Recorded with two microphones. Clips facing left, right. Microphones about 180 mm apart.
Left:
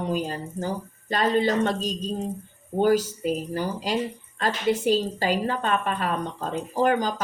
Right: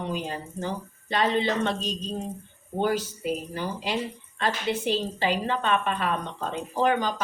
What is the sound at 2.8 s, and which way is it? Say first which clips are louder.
Speech: left 5 dB; 40° left (ahead or behind).